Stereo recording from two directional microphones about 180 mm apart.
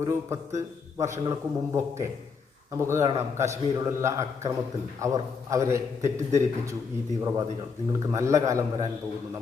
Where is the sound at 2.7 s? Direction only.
15° right (ahead or behind).